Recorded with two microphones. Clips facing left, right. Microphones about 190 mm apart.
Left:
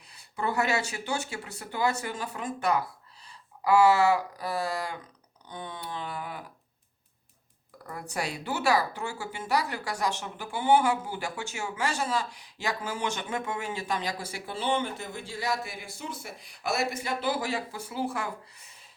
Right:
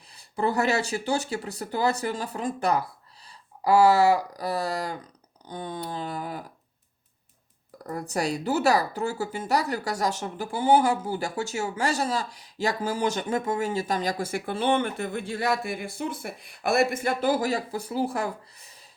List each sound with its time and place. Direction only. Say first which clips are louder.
0.1 s speech: right 5 dB; 35° right (ahead or behind)
7.9 s speech: right 6 dB; 40° right (ahead or behind)